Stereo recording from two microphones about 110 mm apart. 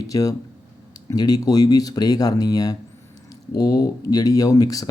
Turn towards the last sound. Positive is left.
turn(degrees=35)  # may be behind; listen again after turning